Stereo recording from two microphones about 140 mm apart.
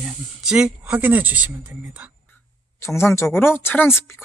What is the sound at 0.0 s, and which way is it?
Speech, 5° right (ahead or behind).